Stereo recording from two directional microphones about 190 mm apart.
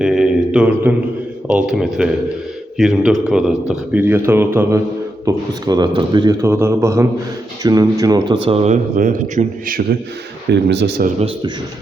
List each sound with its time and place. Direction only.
0.0 s mantra: 5° right (ahead or behind)
1.5 s speech: 5° right (ahead or behind); by 8.4 s 20° right (ahead or behind)
8.4 s a man's voice: 35° right (ahead or behind); by 10.0 s 50° right (ahead or behind)
10.5 s speech: 65° right (ahead or behind)